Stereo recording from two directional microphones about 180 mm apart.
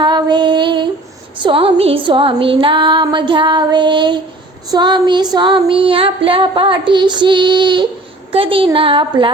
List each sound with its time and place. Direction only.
0.0 s female singing: 25° right (ahead or behind)